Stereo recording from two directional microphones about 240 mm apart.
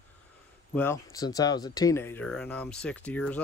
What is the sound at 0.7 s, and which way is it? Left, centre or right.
Speech, centre.